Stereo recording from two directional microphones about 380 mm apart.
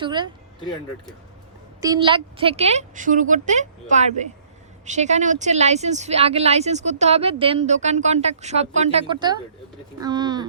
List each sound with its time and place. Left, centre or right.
0.0 s speech: centre
1.8 s speech: centre